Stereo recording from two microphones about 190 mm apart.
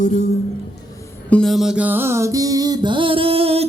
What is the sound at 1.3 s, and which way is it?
Music, centre (ahead or behind).